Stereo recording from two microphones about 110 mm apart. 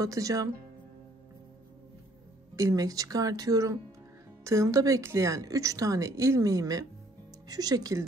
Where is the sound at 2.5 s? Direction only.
30° right (ahead or behind).